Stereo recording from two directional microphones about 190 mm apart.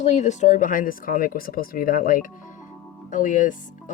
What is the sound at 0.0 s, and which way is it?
Speech, 40° left (ahead or behind).